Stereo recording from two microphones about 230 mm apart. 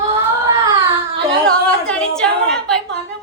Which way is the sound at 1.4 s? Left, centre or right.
Centre.